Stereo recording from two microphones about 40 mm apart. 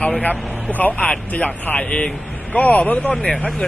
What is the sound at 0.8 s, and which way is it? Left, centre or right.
Speech, left.